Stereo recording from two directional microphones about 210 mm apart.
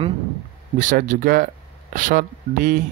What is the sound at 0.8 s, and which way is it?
Speech, 40° right (ahead or behind).